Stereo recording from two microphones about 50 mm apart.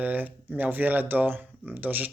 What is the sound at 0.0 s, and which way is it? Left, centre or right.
Speech, right.